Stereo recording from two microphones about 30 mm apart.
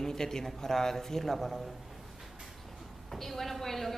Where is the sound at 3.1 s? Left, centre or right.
Centre.